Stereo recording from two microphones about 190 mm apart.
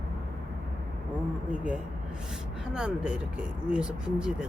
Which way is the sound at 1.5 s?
5° right (ahead or behind).